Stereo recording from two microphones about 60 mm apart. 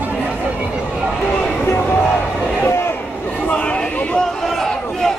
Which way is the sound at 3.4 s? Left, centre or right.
Left.